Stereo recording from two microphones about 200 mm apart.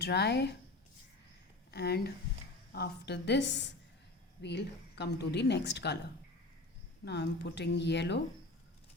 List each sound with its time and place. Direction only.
0.0 s a woman's voice: 55° left (ahead or behind)
1.7 s a woman's voice: 55° left (ahead or behind)
7.0 s a woman's voice: 60° left (ahead or behind)